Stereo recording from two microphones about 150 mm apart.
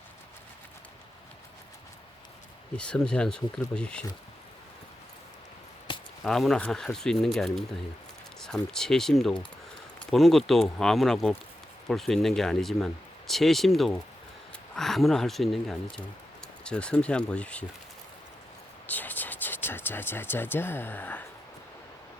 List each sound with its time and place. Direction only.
2.7 s speech: 5° left (ahead or behind)
5.9 s squish: 35° left (ahead or behind)
6.2 s speech: 5° left (ahead or behind)
18.9 s speech: 10° left (ahead or behind)